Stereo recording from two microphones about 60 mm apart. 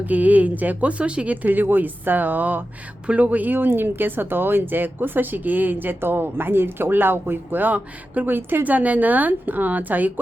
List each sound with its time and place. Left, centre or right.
0.0 s speech: right